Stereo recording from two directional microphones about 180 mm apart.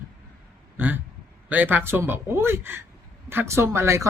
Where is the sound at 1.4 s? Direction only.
10° right (ahead or behind).